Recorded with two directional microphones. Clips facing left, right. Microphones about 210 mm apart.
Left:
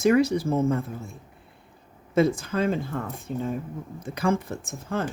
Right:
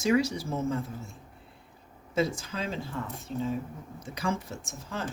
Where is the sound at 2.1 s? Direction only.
55° left (ahead or behind).